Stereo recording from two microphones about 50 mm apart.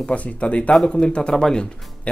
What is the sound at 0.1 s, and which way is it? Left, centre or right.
Speech, left.